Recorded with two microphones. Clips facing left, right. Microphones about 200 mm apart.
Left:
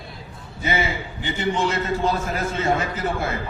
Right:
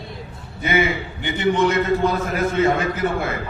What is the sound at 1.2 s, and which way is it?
A man's voice, 60° right (ahead or behind).